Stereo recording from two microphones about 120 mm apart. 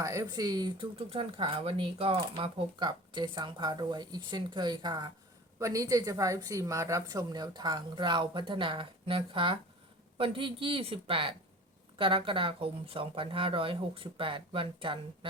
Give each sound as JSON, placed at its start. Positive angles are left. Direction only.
{"t": 0.0, "sound": "a woman's voice", "side_deg": -25}